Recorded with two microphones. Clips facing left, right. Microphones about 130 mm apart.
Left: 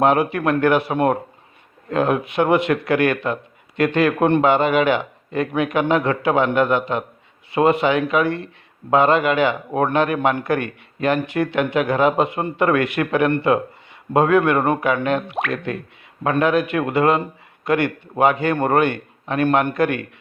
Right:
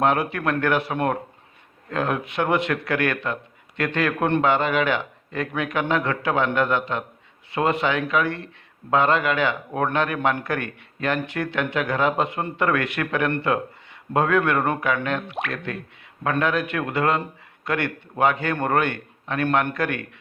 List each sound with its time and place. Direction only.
0.0 s a man's voice: 15° left (ahead or behind)